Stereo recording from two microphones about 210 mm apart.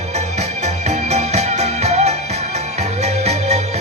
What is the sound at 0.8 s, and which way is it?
Music, 30° right (ahead or behind).